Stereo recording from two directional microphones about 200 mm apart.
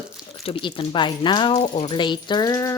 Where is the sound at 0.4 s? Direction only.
25° left (ahead or behind).